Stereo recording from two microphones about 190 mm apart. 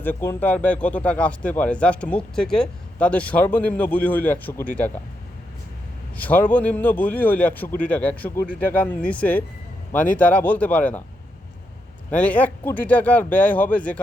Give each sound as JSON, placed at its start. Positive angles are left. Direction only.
{"t": 0.0, "sound": "speech", "side_deg": 10}
{"t": 6.1, "sound": "speech", "side_deg": 10}
{"t": 12.1, "sound": "speech", "side_deg": 10}